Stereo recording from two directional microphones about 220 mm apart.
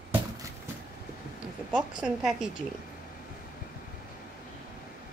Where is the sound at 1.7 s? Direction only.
5° right (ahead or behind).